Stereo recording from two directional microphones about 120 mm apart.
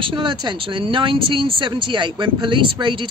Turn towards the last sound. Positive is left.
turn(degrees=-45)  # may be behind; listen again after turning